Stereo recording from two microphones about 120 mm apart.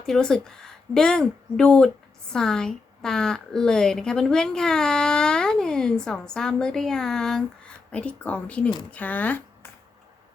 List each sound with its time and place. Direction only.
0.0 s a woman's voice: 5° left (ahead or behind)